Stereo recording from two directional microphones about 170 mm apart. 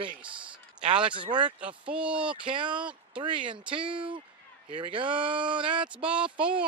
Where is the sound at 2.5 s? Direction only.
30° right (ahead or behind).